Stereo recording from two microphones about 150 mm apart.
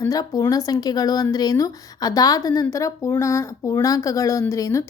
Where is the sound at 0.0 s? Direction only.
25° left (ahead or behind).